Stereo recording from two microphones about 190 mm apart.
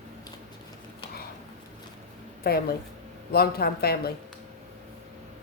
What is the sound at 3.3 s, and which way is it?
Speech, 55° left (ahead or behind).